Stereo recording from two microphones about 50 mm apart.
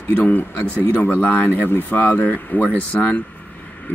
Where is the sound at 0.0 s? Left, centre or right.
Left.